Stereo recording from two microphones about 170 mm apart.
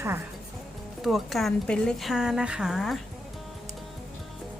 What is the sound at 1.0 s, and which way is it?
A woman's voice, centre (ahead or behind).